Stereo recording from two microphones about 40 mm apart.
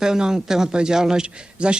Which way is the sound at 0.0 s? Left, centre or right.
Centre.